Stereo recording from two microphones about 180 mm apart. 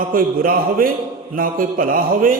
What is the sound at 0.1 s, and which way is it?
A man's voice, 50° right (ahead or behind).